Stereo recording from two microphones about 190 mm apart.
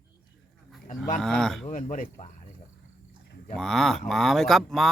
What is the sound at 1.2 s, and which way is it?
Speech, 5° left (ahead or behind).